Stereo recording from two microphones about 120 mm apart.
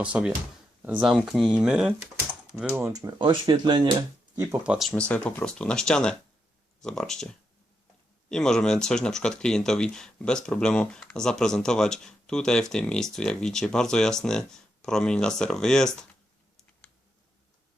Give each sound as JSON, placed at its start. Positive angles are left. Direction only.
{"t": 0.0, "sound": "speech", "side_deg": -10}
{"t": 2.8, "sound": "speech", "side_deg": -20}
{"t": 3.2, "sound": "speech", "side_deg": -40}
{"t": 4.6, "sound": "speech", "side_deg": -10}
{"t": 4.9, "sound": "speech", "side_deg": 10}